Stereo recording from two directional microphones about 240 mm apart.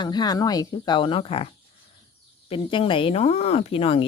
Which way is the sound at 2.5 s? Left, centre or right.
Left.